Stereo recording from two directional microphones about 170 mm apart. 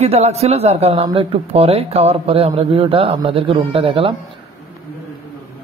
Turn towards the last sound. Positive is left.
turn(degrees=-30)  # may be behind; listen again after turning